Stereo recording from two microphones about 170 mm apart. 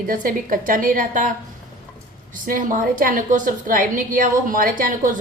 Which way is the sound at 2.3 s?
50° right (ahead or behind).